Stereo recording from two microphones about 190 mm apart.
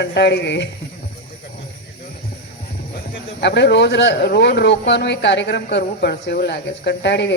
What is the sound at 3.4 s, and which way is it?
Speech, 65° left (ahead or behind).